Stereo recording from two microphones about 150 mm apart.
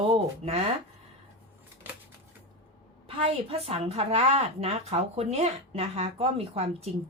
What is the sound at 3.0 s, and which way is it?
A woman's voice, 40° right (ahead or behind).